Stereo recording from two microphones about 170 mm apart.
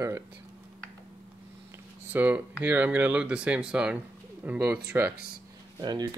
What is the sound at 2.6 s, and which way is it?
Speech, 10° right (ahead or behind).